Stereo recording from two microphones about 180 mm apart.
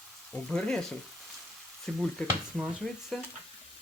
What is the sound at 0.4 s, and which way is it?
Speech, 5° left (ahead or behind).